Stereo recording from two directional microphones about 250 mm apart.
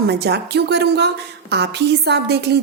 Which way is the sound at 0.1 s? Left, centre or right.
Right.